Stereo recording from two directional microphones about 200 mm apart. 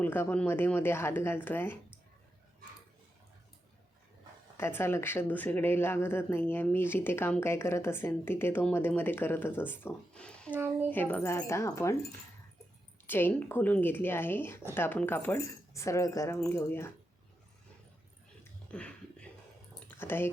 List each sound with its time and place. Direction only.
0.0 s speech: 10° left (ahead or behind)
4.5 s speech: 10° left (ahead or behind)
10.5 s speech: 10° right (ahead or behind)
10.8 s speech: 10° left (ahead or behind)
13.1 s speech: 10° left (ahead or behind)
18.7 s a sound: 5° left (ahead or behind)
20.0 s speech: 10° left (ahead or behind)